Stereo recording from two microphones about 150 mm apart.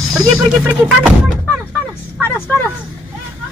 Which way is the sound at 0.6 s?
10° right (ahead or behind).